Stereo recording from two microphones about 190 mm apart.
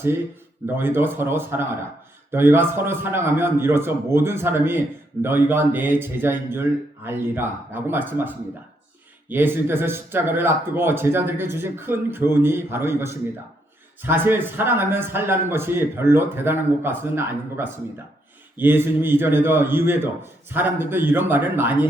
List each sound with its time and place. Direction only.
0.7 s speech: 10° right (ahead or behind)
9.3 s speech: 10° right (ahead or behind)